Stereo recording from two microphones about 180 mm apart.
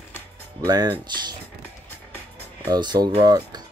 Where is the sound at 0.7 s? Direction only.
25° right (ahead or behind).